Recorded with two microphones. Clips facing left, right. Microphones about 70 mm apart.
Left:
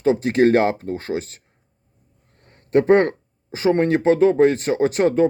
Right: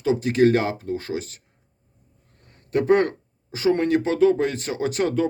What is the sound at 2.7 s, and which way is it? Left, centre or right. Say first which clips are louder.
Speech: left 4 dB; left.